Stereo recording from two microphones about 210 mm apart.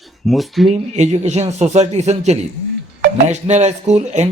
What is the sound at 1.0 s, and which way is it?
A man's voice, 30° right (ahead or behind).